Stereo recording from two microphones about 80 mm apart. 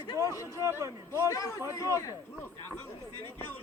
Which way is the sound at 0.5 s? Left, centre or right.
Right.